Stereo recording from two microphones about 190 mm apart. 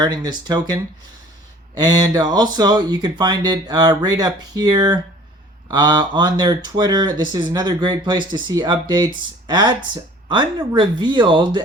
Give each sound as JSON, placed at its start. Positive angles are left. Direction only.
{"t": 0.0, "sound": "speech", "side_deg": -20}